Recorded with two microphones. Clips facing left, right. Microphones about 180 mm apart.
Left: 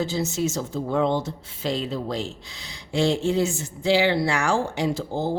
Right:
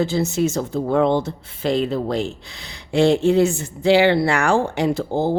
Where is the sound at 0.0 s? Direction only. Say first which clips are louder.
Right 5 dB; 60° right (ahead or behind).